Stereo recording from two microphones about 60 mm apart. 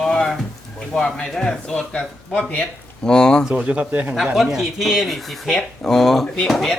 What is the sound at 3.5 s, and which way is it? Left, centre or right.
Speech, right.